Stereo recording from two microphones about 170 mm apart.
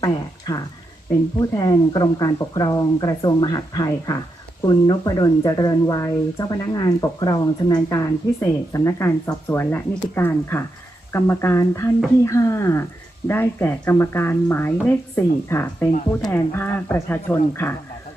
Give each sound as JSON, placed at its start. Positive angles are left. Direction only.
{"t": 0.0, "sound": "speech", "side_deg": 25}